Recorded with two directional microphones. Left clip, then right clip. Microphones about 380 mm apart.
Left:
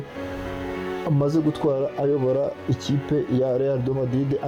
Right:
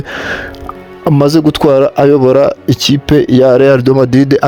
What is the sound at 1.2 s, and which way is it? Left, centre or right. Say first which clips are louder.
Speech: right 14 dB; right.